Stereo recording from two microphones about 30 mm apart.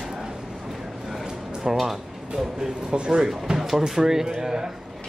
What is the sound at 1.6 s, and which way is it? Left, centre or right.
Speech, centre.